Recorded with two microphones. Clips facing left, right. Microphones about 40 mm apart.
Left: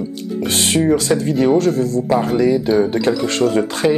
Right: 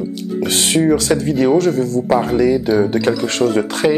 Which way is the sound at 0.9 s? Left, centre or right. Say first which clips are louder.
Right 1 dB; right.